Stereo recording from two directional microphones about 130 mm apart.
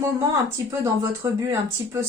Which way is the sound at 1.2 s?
25° right (ahead or behind).